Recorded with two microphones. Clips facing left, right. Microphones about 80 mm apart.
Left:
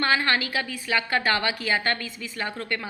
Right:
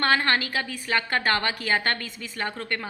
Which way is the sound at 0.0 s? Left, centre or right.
Right.